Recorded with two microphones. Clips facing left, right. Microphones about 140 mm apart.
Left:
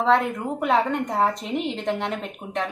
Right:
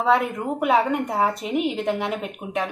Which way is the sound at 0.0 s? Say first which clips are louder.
Even; 10° right (ahead or behind).